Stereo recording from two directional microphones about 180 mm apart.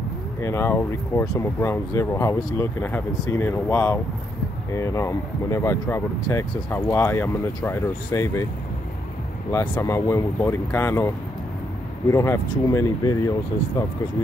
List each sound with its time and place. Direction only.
0.4 s speech: 15° left (ahead or behind)
9.5 s speech: 15° left (ahead or behind)